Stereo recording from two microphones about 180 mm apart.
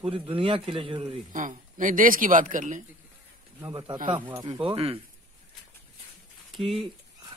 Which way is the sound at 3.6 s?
25° right (ahead or behind).